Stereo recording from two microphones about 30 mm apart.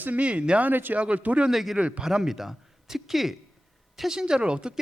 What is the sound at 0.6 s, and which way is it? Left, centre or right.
Speech, right.